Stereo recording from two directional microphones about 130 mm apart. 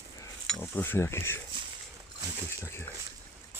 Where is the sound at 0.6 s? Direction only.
15° left (ahead or behind).